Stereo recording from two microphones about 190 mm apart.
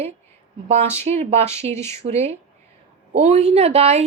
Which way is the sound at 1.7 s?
15° left (ahead or behind).